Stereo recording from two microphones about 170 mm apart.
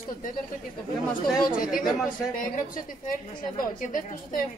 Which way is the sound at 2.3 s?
55° left (ahead or behind).